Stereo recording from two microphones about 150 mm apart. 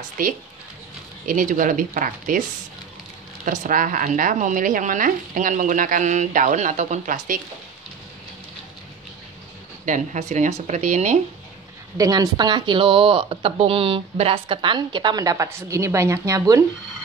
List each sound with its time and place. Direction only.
0.2 s a woman's voice: 65° right (ahead or behind)
3.4 s a woman's voice: 60° right (ahead or behind)
9.8 s speech: 55° right (ahead or behind)
12.0 s speech: 25° right (ahead or behind)